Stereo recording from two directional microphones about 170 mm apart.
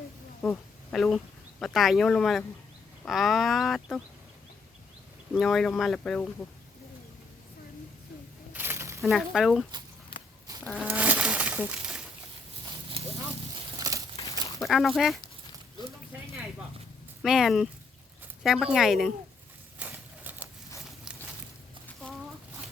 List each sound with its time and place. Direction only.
0.4 s speech: 5° left (ahead or behind)
5.3 s speech: centre (ahead or behind)
8.5 s a sound: 15° right (ahead or behind)
9.0 s speech: centre (ahead or behind)
10.8 s a sound: 10° right (ahead or behind)
13.7 s crumpling: 20° right (ahead or behind)
14.6 s speech: centre (ahead or behind)
17.2 s speech: centre (ahead or behind)
19.8 s a sound: 10° right (ahead or behind)